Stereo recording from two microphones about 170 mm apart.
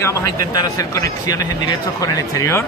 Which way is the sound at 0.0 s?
20° left (ahead or behind).